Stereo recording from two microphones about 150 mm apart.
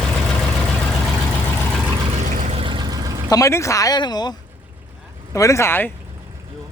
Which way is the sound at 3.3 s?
20° left (ahead or behind).